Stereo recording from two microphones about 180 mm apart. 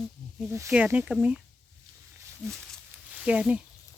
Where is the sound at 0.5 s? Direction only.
10° right (ahead or behind).